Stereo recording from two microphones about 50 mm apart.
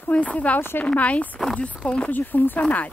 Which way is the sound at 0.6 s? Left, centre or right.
Left.